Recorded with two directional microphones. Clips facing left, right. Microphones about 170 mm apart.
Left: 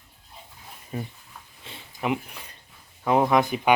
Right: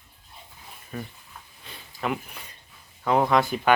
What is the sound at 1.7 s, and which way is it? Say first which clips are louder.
Sniff: left 3 dB; 25° left (ahead or behind).